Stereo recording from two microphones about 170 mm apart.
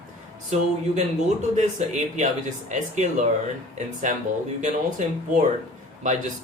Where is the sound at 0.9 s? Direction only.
45° right (ahead or behind).